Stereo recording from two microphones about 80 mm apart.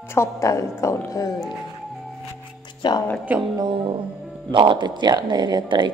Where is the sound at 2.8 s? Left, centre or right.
Left.